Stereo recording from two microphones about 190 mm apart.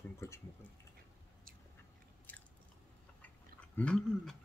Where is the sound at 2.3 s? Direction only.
10° left (ahead or behind).